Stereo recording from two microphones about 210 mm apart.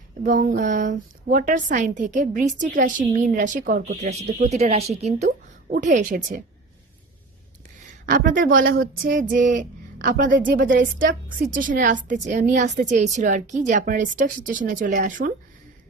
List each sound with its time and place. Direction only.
0.2 s a woman's voice: 40° right (ahead or behind)
8.1 s a woman's voice: 40° right (ahead or behind)